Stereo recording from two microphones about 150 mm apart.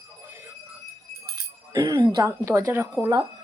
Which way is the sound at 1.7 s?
25° right (ahead or behind).